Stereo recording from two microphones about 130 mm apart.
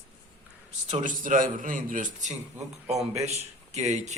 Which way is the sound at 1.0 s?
90° right.